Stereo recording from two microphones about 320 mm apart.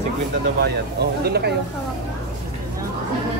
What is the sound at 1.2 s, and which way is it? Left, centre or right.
Speech, right.